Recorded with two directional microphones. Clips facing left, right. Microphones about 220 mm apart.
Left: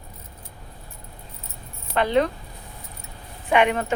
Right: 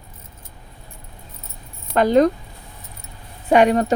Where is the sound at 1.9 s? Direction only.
40° right (ahead or behind).